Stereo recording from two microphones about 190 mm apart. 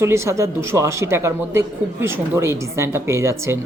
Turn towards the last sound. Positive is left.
turn(degrees=-15)  # may be behind; listen again after turning